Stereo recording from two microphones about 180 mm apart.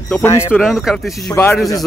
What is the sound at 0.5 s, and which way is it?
Speech, centre (ahead or behind).